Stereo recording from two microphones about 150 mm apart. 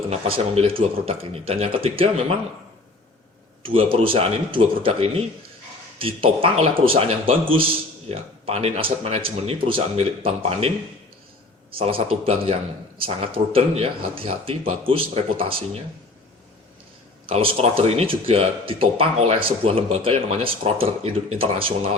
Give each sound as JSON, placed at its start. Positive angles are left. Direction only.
{"t": 0.1, "sound": "a man's voice", "side_deg": -40}
{"t": 3.6, "sound": "a man's voice", "side_deg": -35}
{"t": 11.8, "sound": "a man's voice", "side_deg": -40}
{"t": 17.2, "sound": "a man's voice", "side_deg": -40}